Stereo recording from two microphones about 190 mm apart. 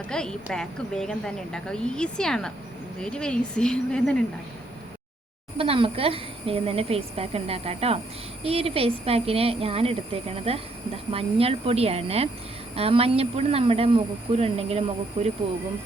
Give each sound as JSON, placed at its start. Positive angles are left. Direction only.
{"t": 0.1, "sound": "a woman's voice", "side_deg": 5}
{"t": 5.5, "sound": "speech", "side_deg": -30}